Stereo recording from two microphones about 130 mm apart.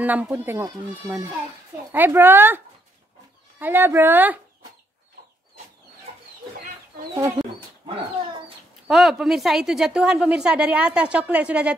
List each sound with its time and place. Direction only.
0.0 s a woman's voice: 15° right (ahead or behind)
7.2 s speech: 30° right (ahead or behind)
8.8 s a woman's voice: centre (ahead or behind)